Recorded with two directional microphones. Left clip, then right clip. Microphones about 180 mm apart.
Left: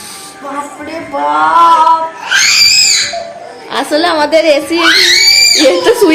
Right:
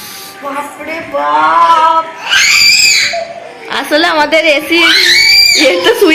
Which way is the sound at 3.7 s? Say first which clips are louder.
Right 1 dB; centre (ahead or behind).